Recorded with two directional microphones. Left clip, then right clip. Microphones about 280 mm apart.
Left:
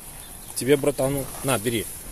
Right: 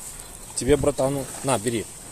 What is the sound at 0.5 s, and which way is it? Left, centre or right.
Speech, centre.